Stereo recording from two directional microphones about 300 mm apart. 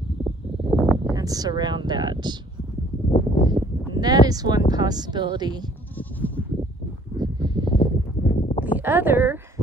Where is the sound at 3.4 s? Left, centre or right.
Centre.